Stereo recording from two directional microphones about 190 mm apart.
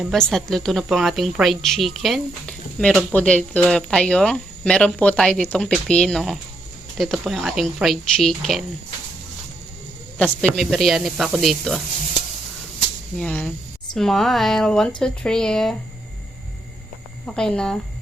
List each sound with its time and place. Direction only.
0.1 s a woman's voice: centre (ahead or behind)
10.5 s a woman's voice: centre (ahead or behind)
13.1 s a woman's voice: 5° left (ahead or behind)
17.2 s a woman's voice: 5° left (ahead or behind)